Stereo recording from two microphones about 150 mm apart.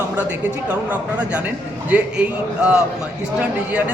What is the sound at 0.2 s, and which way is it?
A man's voice, 10° right (ahead or behind).